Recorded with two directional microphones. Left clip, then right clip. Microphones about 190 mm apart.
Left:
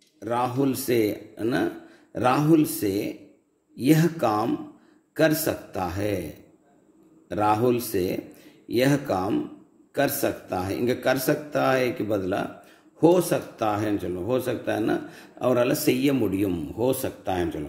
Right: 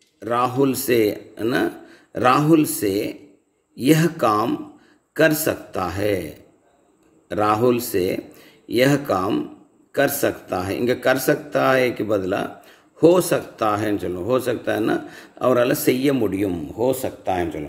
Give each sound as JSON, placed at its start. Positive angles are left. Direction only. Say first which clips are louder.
{"t": 0.2, "sound": "a man's voice", "louder": "right 5 dB", "side_deg": -20}